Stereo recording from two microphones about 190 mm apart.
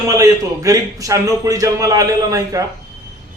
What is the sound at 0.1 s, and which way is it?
A man's voice, 20° right (ahead or behind).